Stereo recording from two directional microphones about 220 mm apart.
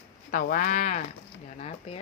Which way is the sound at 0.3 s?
40° left (ahead or behind).